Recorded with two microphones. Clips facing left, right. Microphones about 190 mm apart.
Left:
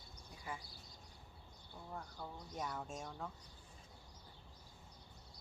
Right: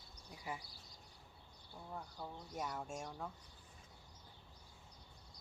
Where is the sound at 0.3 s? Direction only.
20° right (ahead or behind).